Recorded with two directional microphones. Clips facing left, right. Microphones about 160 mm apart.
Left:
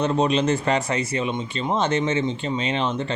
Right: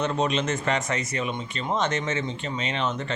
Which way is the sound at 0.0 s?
35° left (ahead or behind).